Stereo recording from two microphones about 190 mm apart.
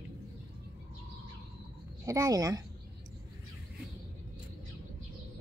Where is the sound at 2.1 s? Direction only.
20° right (ahead or behind).